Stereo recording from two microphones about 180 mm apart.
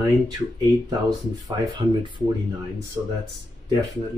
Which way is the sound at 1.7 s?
25° right (ahead or behind).